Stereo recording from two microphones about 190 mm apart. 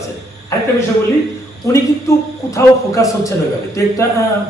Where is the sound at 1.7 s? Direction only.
15° left (ahead or behind).